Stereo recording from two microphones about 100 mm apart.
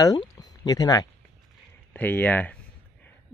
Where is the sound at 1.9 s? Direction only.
15° left (ahead or behind).